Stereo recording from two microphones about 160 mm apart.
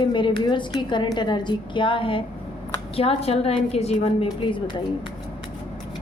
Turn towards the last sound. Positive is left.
turn(degrees=35)  # may be behind; listen again after turning